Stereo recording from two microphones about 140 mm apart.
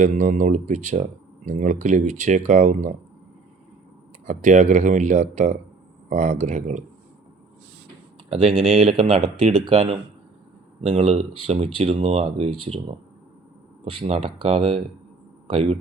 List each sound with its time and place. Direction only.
0.0 s speech: 60° right (ahead or behind)
4.3 s speech: 60° right (ahead or behind)
8.3 s speech: 45° right (ahead or behind)